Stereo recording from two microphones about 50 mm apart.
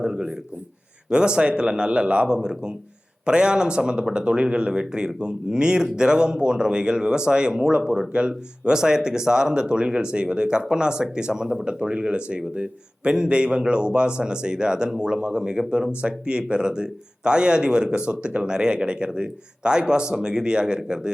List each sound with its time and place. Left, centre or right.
0.0 s speech: centre